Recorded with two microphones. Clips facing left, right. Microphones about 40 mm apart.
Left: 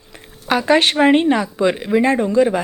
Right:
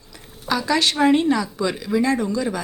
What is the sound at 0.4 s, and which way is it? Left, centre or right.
Speech, left.